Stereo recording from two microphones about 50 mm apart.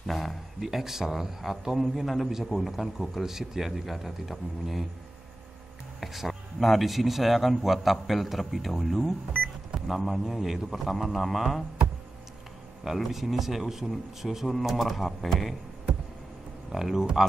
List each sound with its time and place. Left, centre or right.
0.0 s speech: centre
5.9 s speech: centre
12.8 s speech: centre
16.7 s speech: centre